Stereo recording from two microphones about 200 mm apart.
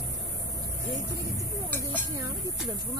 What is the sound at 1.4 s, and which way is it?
Speech, 10° left (ahead or behind).